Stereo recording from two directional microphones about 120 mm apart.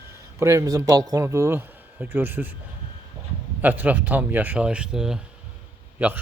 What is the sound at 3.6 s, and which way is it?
Speech, 15° right (ahead or behind).